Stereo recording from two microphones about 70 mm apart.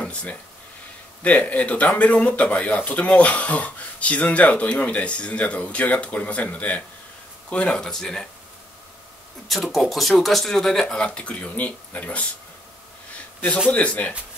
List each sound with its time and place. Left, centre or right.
0.0 s a sound: centre
1.2 s speech: left
9.5 s speech: centre; by 12.3 s left
13.7 s speech: centre